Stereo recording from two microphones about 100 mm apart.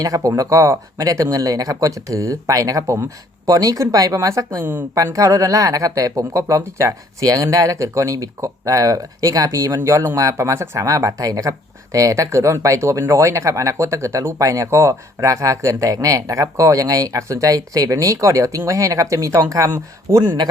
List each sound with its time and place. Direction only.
0.0 s speech: 35° right (ahead or behind)
4.6 s speech: 20° right (ahead or behind)
5.0 s speech: 30° right (ahead or behind)